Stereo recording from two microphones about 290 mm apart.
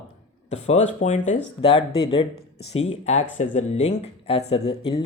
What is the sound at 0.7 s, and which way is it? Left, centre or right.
Speech, left.